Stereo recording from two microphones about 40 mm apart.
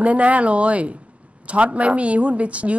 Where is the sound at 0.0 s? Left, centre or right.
Right.